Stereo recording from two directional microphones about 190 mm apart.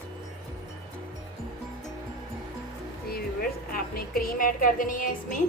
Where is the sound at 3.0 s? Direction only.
50° left (ahead or behind).